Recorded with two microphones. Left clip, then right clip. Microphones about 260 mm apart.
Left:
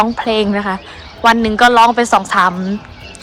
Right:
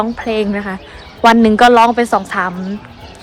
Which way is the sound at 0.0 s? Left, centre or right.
Centre.